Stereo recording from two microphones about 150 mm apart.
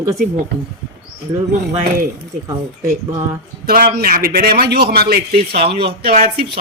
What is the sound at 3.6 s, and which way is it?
A man's voice, 80° right.